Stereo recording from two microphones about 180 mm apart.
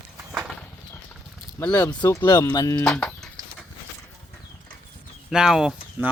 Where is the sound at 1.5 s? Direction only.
20° left (ahead or behind).